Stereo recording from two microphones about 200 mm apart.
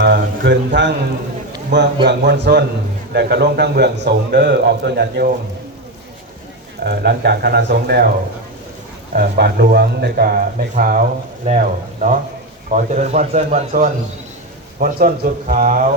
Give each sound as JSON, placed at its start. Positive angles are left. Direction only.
{"t": 0.0, "sound": "a man's voice", "side_deg": -60}
{"t": 6.8, "sound": "a man's voice", "side_deg": -55}
{"t": 9.1, "sound": "a man's voice", "side_deg": -50}